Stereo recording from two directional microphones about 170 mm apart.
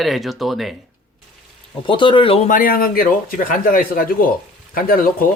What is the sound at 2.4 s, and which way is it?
A man's voice, 55° left (ahead or behind).